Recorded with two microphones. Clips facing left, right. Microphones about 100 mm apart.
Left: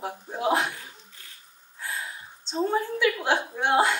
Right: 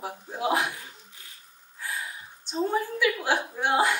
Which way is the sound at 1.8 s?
20° left (ahead or behind).